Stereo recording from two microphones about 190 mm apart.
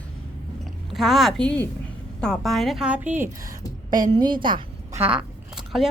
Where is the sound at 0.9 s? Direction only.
Centre (ahead or behind).